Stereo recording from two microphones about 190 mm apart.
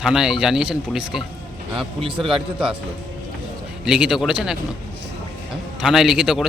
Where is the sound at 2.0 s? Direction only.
25° right (ahead or behind).